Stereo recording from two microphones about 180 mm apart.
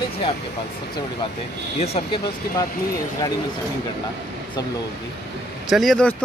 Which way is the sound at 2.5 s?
60° left (ahead or behind).